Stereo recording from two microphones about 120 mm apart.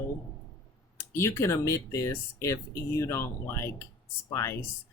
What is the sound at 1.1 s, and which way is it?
Speech, 20° left (ahead or behind).